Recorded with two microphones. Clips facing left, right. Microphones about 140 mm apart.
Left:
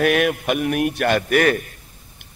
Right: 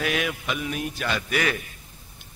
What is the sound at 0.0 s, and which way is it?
A man's voice, 55° left (ahead or behind).